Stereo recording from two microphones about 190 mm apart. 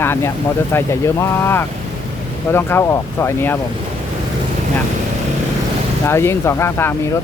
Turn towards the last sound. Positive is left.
turn(degrees=10)  # may be behind; listen again after turning